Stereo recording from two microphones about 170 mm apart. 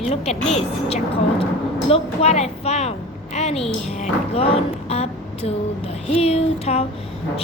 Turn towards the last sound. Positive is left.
turn(degrees=35)  # may be behind; listen again after turning